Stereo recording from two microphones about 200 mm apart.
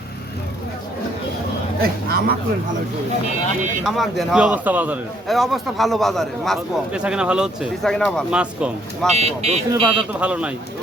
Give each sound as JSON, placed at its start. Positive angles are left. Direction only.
{"t": 1.8, "sound": "a sound", "side_deg": -50}
{"t": 3.8, "sound": "a man's voice", "side_deg": 0}
{"t": 9.1, "sound": "speech", "side_deg": -30}
{"t": 10.1, "sound": "speech", "side_deg": -5}